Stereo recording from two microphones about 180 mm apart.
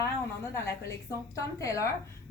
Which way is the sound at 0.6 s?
15° left (ahead or behind).